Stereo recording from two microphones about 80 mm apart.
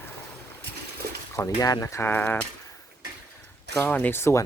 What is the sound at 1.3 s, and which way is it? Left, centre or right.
Speech, left.